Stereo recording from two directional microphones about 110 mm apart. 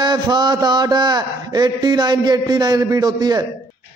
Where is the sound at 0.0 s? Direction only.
40° right (ahead or behind).